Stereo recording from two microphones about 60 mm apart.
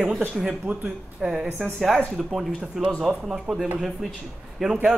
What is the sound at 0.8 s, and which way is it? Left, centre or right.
Speech, centre.